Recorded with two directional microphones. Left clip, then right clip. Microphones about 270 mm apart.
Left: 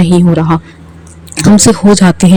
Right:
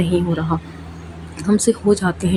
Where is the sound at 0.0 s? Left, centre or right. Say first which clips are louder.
Left 10 dB; left.